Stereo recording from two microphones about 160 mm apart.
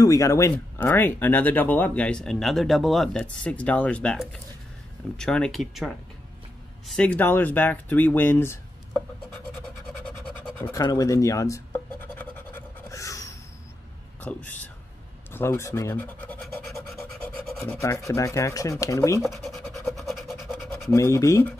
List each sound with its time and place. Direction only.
0.0 s speech: 20° left (ahead or behind)
10.6 s scratch: 20° left (ahead or behind)
14.2 s speech: 10° left (ahead or behind)
17.6 s speech: 20° left (ahead or behind)
19.2 s speech: centre (ahead or behind)
19.9 s scratch: centre (ahead or behind)
20.8 s speech: 15° left (ahead or behind)